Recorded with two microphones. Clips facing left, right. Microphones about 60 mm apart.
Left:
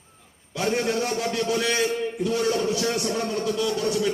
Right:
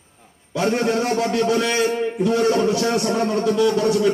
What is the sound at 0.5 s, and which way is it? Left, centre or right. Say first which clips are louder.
A man's voice: right 5 dB; right.